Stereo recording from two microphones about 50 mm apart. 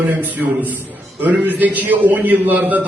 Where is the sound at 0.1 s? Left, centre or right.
Right.